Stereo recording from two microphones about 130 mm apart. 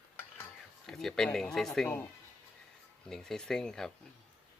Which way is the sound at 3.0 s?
5° left (ahead or behind).